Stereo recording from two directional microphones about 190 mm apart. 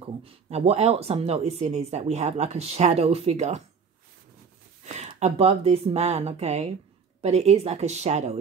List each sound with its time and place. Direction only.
0.2 s speech: 30° right (ahead or behind)
4.8 s speech: 35° right (ahead or behind)